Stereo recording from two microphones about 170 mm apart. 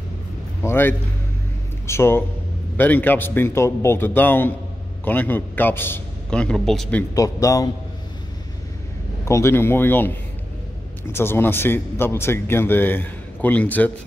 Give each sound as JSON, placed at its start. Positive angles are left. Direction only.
{"t": 0.6, "sound": "a man's voice", "side_deg": 15}
{"t": 7.2, "sound": "speech", "side_deg": 20}
{"t": 9.2, "sound": "speech", "side_deg": 15}